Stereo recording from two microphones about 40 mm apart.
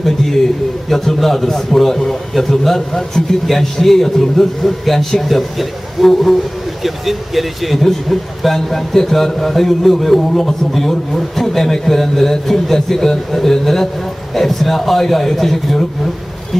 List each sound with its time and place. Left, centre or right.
0.0 s a man's voice: centre